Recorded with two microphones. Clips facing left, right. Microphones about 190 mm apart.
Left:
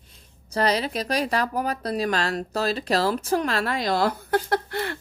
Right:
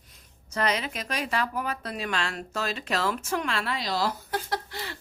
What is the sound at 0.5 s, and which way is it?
Speech, 35° left (ahead or behind).